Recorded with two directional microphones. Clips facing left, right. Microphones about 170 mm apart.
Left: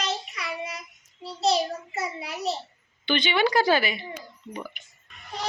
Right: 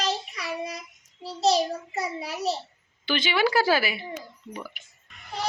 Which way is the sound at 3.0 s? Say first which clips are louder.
Left 1 dB; 5° right (ahead or behind).